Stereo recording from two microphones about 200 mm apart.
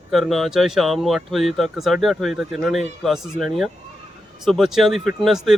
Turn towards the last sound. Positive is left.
turn(degrees=0)  # may be behind; listen again after turning